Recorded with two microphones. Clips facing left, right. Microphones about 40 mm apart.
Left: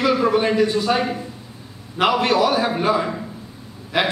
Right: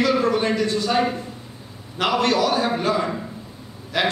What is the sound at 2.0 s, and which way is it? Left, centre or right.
A man's voice, centre.